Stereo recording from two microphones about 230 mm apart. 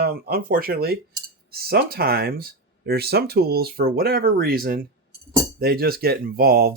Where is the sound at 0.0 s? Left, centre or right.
Right.